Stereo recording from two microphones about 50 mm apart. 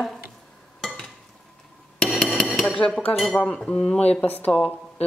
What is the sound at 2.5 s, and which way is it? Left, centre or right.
Dishes, left.